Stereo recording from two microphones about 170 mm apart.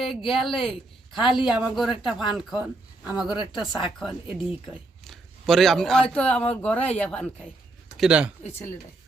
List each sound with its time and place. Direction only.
0.3 s speech: centre (ahead or behind)
3.2 s a woman's voice: 25° left (ahead or behind)
3.6 s speech: centre (ahead or behind)
7.9 s speech: 5° right (ahead or behind)